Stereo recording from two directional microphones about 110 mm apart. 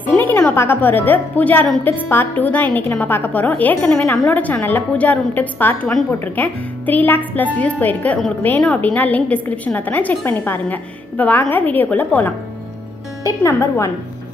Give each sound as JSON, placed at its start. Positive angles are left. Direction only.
{"t": 0.0, "sound": "music", "side_deg": 15}
{"t": 0.6, "sound": "a woman's voice", "side_deg": 20}
{"t": 13.4, "sound": "a woman's voice", "side_deg": 25}